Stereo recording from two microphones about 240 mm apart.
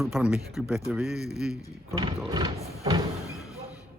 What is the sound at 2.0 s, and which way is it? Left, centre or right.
Speech, centre.